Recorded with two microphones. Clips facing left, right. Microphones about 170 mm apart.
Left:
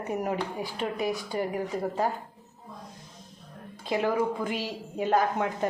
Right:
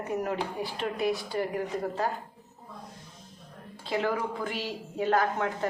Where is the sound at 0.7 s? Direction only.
15° left (ahead or behind).